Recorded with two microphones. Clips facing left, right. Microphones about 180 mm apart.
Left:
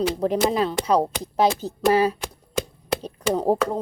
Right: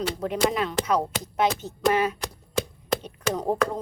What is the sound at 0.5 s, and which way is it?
Speech, 30° left (ahead or behind).